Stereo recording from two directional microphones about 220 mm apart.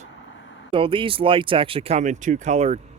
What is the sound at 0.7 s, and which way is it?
Speech, 25° right (ahead or behind).